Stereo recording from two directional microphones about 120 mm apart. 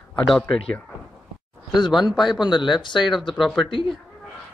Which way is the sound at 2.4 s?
40° left (ahead or behind).